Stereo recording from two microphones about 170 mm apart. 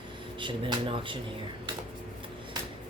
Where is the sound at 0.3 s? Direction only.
30° right (ahead or behind).